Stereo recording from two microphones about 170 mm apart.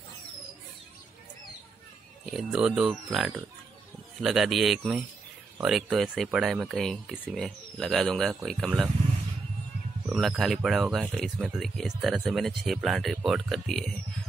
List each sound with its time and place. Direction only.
2.2 s speech: 5° right (ahead or behind)
10.0 s speech: centre (ahead or behind)